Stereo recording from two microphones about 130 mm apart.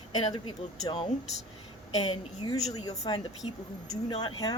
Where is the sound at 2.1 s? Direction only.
30° left (ahead or behind).